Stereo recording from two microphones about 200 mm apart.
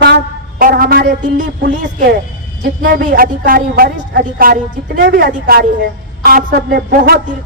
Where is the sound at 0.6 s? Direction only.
45° right (ahead or behind).